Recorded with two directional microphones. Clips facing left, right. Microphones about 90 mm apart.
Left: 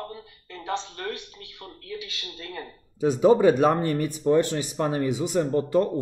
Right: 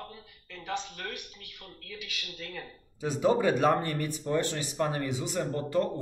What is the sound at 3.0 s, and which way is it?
Speech, 20° left (ahead or behind).